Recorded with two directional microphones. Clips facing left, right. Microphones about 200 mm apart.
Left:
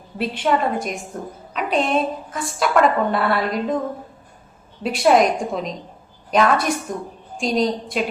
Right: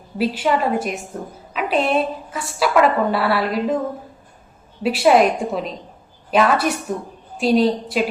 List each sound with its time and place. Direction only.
0.2 s a woman's voice: 5° right (ahead or behind)
4.8 s a woman's voice: 5° right (ahead or behind)